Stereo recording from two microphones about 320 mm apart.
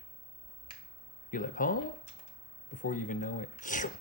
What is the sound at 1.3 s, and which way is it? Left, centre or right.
Speech, left.